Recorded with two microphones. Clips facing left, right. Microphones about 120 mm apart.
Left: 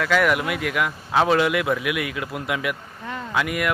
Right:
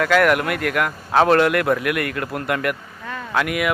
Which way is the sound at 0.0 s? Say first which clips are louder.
Right 4 dB; centre (ahead or behind).